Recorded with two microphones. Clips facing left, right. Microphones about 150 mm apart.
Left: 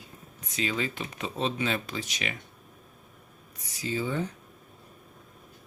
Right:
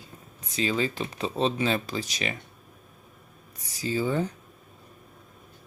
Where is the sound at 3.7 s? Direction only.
35° right (ahead or behind).